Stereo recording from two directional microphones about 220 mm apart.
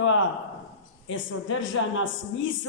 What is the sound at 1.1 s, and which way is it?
A woman's voice, 60° left (ahead or behind).